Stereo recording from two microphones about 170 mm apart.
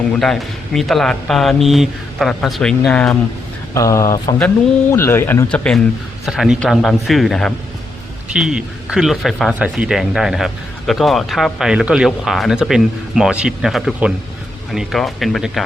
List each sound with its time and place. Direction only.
0.2 s speech: centre (ahead or behind)
3.8 s speech: 20° left (ahead or behind); by 15.6 s centre (ahead or behind)